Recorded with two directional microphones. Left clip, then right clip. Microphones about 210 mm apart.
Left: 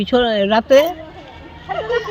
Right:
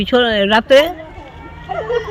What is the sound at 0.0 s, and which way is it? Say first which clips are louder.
Speech: right 2 dB; 10° right (ahead or behind).